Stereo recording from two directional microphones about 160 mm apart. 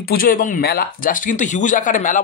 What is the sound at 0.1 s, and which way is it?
Speech, 60° left (ahead or behind).